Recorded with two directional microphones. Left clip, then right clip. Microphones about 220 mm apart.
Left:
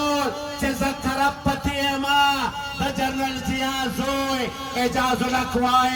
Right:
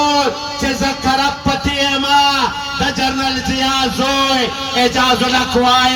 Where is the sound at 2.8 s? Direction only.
Centre (ahead or behind).